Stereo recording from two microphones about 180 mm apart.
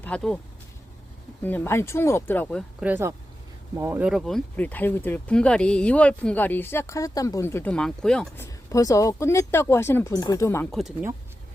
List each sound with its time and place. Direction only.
0.0 s speech: 5° left (ahead or behind)
1.4 s speech: 10° left (ahead or behind)
2.8 s speech: 10° right (ahead or behind); by 8.4 s 5° left (ahead or behind)
8.4 s speech: 20° left (ahead or behind)
10.7 s speech: centre (ahead or behind)